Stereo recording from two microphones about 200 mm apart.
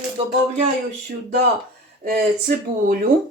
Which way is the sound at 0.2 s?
25° right (ahead or behind).